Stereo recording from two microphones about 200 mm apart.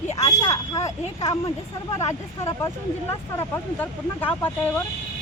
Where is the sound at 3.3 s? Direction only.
10° left (ahead or behind).